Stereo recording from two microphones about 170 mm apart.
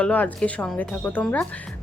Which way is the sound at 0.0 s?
5° left (ahead or behind).